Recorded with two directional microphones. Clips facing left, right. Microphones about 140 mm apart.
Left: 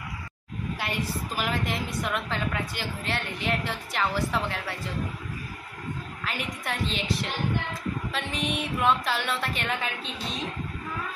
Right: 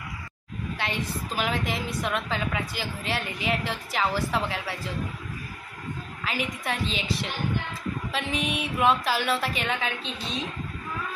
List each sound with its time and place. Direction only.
0.7 s a woman's voice: 5° left (ahead or behind)
6.2 s a woman's voice: centre (ahead or behind)